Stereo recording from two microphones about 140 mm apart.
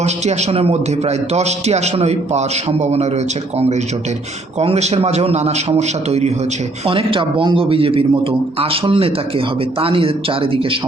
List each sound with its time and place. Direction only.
0.0 s a man's voice: 50° right (ahead or behind)
4.6 s a man's voice: 50° right (ahead or behind)
6.8 s a man's voice: 40° right (ahead or behind)